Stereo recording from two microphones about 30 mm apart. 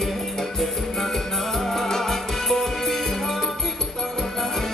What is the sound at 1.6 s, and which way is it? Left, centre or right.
Music, centre.